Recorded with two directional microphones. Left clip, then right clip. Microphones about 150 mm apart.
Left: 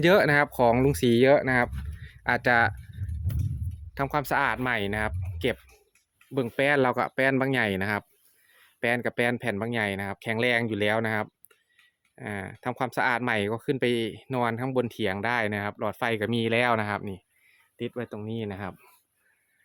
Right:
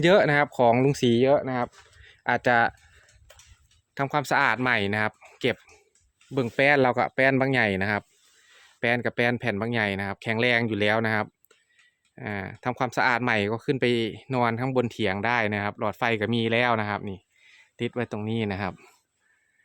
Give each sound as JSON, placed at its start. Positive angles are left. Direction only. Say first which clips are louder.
{"t": 0.0, "sound": "speech", "louder": "right 1 dB", "side_deg": -5}
{"t": 1.2, "sound": "speech", "louder": "left 4 dB", "side_deg": 15}
{"t": 2.0, "sound": "a sound", "louder": "right 1 dB", "side_deg": -5}
{"t": 3.9, "sound": "speech", "louder": "right 2 dB", "side_deg": -10}
{"t": 17.5, "sound": "speech", "louder": "right 4 dB", "side_deg": -30}